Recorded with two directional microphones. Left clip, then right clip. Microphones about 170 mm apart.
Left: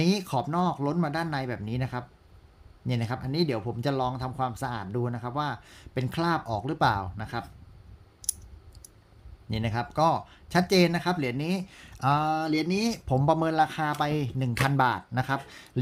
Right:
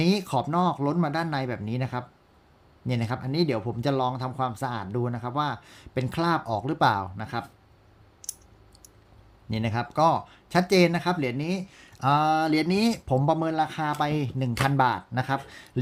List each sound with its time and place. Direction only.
0.0 s speech: centre (ahead or behind)
8.2 s clicking: 20° left (ahead or behind)
9.5 s speech: centre (ahead or behind); by 12.0 s 15° left (ahead or behind)
12.0 s speech: centre (ahead or behind)
12.3 s speech: 10° right (ahead or behind)